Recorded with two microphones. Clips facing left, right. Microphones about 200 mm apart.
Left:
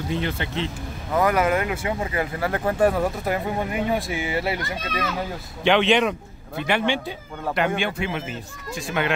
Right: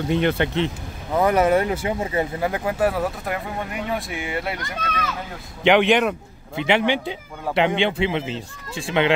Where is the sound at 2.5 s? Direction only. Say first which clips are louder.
Left 1 dB; 10° right (ahead or behind).